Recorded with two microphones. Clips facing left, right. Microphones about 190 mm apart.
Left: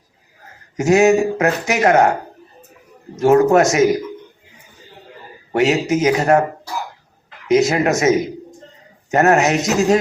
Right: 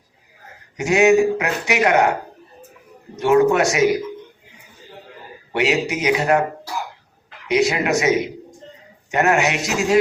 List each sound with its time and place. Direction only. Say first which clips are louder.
0.8 s speech: left 2 dB; 40° left (ahead or behind)
3.2 s speech: left 3 dB; 45° left (ahead or behind)
5.5 s speech: left 4 dB; 45° left (ahead or behind)
7.4 s speech: left 4 dB; 45° left (ahead or behind)